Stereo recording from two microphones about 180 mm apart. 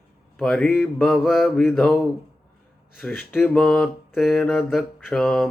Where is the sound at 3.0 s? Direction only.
10° left (ahead or behind).